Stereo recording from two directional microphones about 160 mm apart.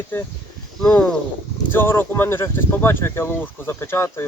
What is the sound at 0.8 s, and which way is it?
Speech, 5° left (ahead or behind).